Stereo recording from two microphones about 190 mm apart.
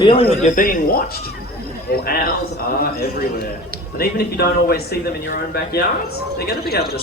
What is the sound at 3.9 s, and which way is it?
A man's voice, 55° left (ahead or behind).